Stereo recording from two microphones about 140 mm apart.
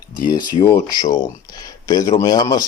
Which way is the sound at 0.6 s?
25° left (ahead or behind).